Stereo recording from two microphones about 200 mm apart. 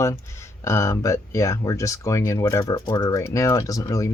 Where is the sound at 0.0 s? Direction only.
15° left (ahead or behind).